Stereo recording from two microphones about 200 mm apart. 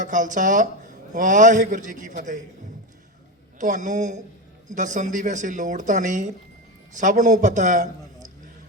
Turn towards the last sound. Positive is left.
turn(degrees=-40)  # may be behind; listen again after turning